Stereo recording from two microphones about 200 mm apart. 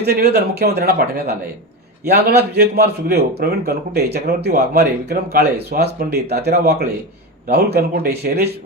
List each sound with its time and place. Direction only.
0.0 s a man's voice: 55° right (ahead or behind)